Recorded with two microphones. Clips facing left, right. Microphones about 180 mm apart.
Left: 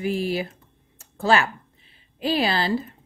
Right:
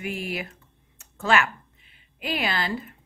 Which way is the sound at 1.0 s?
30° left (ahead or behind).